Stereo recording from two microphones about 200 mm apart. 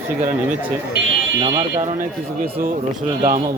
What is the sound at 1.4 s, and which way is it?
Speech, 25° right (ahead or behind).